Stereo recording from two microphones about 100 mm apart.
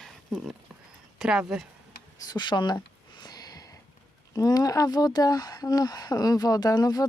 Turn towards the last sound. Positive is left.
turn(degrees=40)  # may be behind; listen again after turning